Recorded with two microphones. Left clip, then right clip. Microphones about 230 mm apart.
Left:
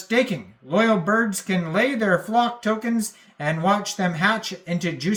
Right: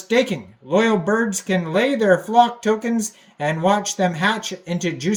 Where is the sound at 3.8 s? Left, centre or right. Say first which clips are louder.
Right 3 dB; centre.